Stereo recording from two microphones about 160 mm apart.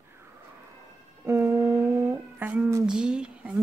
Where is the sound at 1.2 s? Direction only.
15° right (ahead or behind).